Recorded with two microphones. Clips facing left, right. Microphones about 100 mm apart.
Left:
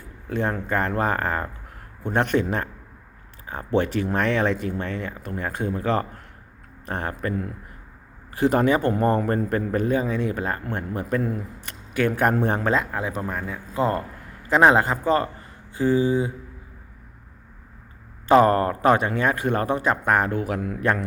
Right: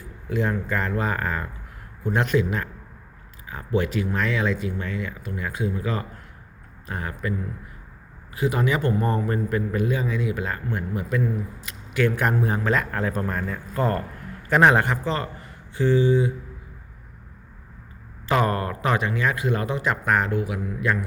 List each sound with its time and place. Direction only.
0.5 s a man's voice: 50° left (ahead or behind)
3.4 s a sound: 40° left (ahead or behind)
4.0 s a man's voice: 55° left (ahead or behind)
8.4 s a man's voice: 50° left (ahead or behind)
12.5 s a man's voice: 25° left (ahead or behind); by 13.6 s 5° left (ahead or behind)
13.7 s speech: 25° left (ahead or behind)
18.3 s a man's voice: 35° left (ahead or behind)